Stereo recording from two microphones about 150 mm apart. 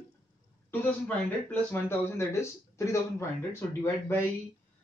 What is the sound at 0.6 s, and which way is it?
Speech, 10° left (ahead or behind).